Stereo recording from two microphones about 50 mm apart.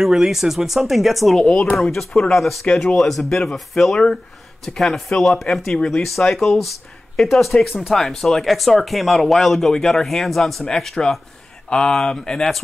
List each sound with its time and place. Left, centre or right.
0.0 s speech: centre
2.6 s speech: centre
3.0 s speech: centre